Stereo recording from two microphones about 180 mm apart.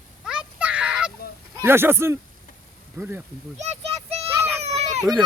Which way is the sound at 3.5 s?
40° right (ahead or behind).